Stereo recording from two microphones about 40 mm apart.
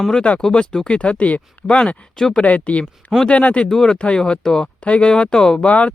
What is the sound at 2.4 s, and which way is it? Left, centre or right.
Speech, left.